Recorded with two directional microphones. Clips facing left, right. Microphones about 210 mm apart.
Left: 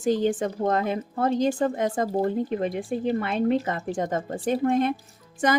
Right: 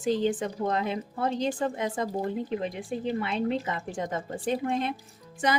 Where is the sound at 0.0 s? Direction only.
45° left (ahead or behind).